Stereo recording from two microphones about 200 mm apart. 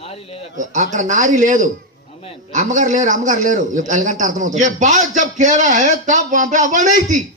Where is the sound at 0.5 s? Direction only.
40° right (ahead or behind).